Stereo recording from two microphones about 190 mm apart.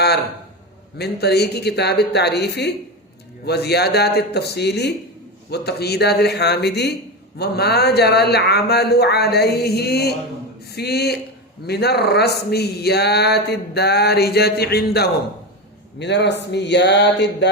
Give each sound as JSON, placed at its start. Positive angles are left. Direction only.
{"t": 0.9, "sound": "speech", "side_deg": 60}